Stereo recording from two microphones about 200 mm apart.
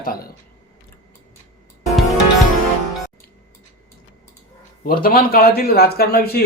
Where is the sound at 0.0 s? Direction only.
45° left (ahead or behind).